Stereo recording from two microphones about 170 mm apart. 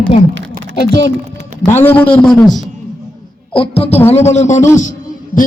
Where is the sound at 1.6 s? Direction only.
10° left (ahead or behind).